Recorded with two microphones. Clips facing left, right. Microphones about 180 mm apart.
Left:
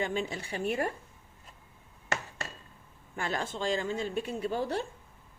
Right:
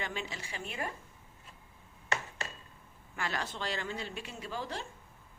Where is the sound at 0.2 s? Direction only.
55° left (ahead or behind).